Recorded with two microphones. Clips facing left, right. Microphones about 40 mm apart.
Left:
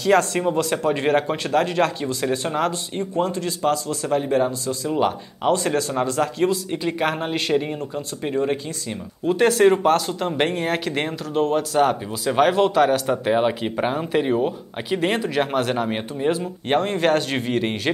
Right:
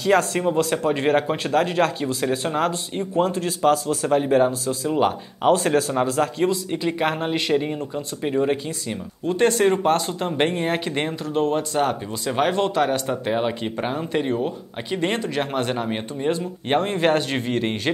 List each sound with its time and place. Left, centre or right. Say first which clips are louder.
0.0 s speech: left 1 dB; centre
3.3 s a man's voice: right 2 dB; right
4.1 s speech: right 2 dB; centre
5.4 s a man's voice: right 2 dB; right
5.9 s speech: right 1 dB; centre
9.2 s speech: left 3 dB; centre
17.3 s speech: left 1 dB; centre